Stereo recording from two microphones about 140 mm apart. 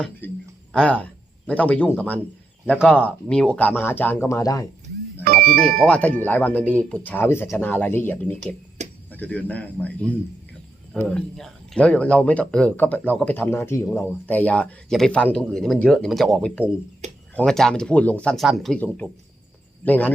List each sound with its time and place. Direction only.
0.2 s a sound: 15° left (ahead or behind)
0.7 s speech: 5° left (ahead or behind)
5.2 s music: 90° right
5.8 s speech: 10° left (ahead or behind)
19.8 s speech: 10° left (ahead or behind)